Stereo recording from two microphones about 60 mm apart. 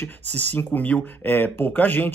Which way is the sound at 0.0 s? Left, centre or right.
Left.